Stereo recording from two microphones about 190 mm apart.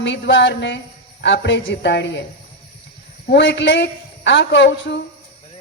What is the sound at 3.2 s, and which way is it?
A woman's voice, 65° left (ahead or behind).